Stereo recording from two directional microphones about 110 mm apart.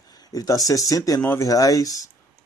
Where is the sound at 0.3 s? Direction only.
35° left (ahead or behind).